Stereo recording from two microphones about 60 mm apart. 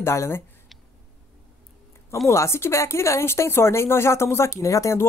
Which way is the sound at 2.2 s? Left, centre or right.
Left.